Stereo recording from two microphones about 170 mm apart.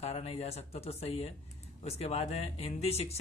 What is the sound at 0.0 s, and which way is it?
Speech, 35° left (ahead or behind).